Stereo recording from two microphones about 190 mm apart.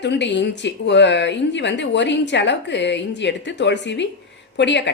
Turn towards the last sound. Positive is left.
turn(degrees=65)  # may be behind; listen again after turning